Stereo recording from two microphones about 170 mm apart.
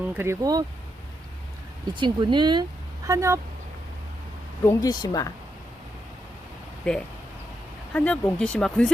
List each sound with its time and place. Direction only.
0.0 s speech: 10° right (ahead or behind)
2.0 s speech: 25° right (ahead or behind)
4.6 s speech: 20° left (ahead or behind)
6.8 s speech: 5° left (ahead or behind)